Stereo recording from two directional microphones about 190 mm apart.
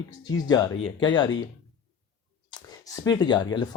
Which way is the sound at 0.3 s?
20° left (ahead or behind).